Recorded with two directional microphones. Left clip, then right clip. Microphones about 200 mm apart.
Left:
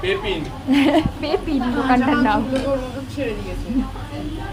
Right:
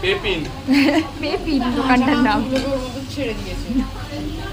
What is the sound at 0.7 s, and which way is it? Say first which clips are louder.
Speech: even; 10° left (ahead or behind).